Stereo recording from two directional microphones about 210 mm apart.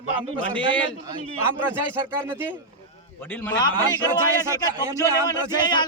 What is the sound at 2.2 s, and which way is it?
Speech, 10° right (ahead or behind).